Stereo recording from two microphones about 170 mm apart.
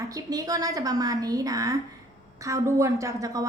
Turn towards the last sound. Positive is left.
turn(degrees=-20)  # may be behind; listen again after turning